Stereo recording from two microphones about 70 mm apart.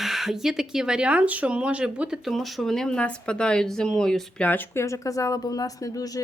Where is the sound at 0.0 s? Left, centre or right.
Centre.